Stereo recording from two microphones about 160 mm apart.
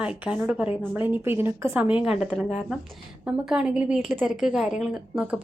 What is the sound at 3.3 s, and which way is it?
A woman's voice, 5° right (ahead or behind).